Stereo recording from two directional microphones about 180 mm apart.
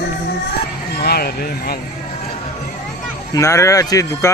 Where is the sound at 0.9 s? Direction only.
60° left (ahead or behind).